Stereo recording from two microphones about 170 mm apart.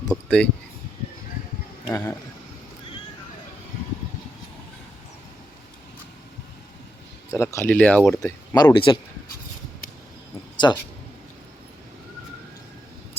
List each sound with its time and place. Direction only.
0.1 s speech: centre (ahead or behind)
1.9 s speech: 15° left (ahead or behind)
7.3 s speech: 15° left (ahead or behind)
8.2 s speech: 20° left (ahead or behind)
10.6 s speech: 25° left (ahead or behind)